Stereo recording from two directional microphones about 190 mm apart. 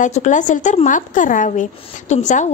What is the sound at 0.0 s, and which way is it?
A woman's voice, 40° left (ahead or behind).